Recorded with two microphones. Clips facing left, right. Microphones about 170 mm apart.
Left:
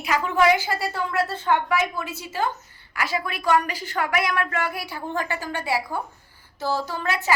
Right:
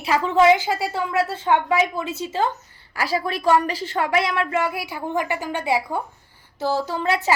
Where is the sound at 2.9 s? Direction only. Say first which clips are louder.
Right 4 dB; 35° right (ahead or behind).